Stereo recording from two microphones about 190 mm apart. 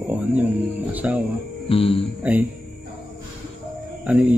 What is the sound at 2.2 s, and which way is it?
Speech, 10° right (ahead or behind).